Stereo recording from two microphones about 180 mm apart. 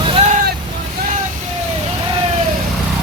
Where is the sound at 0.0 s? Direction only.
30° right (ahead or behind).